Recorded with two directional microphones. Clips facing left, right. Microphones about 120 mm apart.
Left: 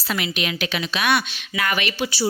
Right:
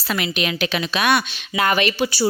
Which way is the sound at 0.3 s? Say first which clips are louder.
Right 3 dB; 35° right (ahead or behind).